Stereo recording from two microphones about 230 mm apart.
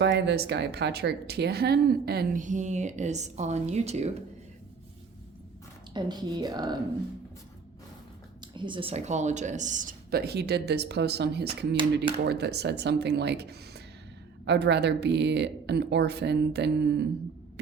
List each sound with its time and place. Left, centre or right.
0.0 s a woman's voice: right
5.9 s a woman's voice: centre
8.5 s a woman's voice: right